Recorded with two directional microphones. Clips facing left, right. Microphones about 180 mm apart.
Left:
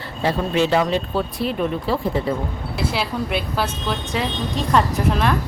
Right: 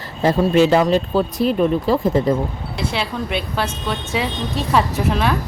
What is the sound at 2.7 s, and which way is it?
Speech, 5° left (ahead or behind).